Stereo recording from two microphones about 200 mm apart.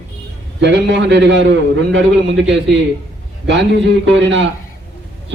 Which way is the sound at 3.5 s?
65° right (ahead or behind).